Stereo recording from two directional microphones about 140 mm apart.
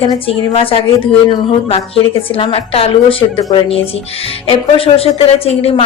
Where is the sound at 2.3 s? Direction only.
45° left (ahead or behind).